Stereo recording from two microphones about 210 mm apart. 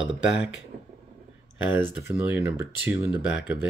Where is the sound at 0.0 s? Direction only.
55° left (ahead or behind).